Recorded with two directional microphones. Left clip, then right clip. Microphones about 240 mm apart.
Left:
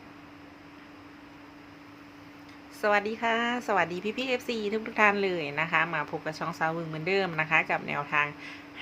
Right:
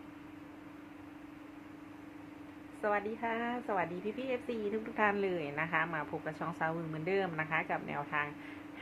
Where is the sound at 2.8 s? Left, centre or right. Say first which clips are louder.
Left 8 dB; left.